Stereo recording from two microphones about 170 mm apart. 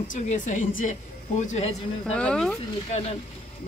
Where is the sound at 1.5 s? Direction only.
40° left (ahead or behind).